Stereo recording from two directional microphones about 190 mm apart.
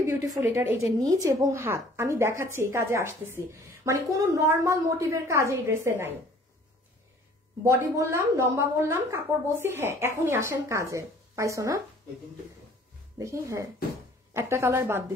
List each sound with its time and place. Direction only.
0.0 s a woman's voice: 15° right (ahead or behind)
7.6 s a woman's voice: 15° right (ahead or behind)
13.2 s a woman's voice: 15° right (ahead or behind)